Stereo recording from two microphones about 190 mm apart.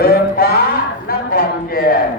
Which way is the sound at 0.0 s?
55° left (ahead or behind).